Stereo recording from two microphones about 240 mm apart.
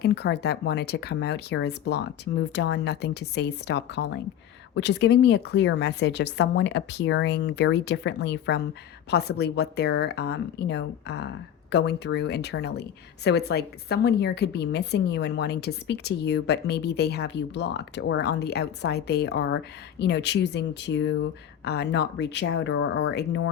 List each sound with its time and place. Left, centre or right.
0.0 s a woman's voice: left